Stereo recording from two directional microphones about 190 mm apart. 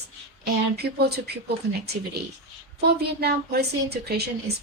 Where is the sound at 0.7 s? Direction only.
60° right (ahead or behind).